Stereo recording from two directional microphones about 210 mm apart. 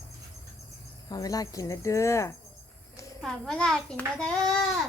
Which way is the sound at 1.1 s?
15° left (ahead or behind).